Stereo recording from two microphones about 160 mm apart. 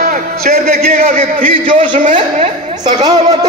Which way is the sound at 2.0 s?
50° right (ahead or behind).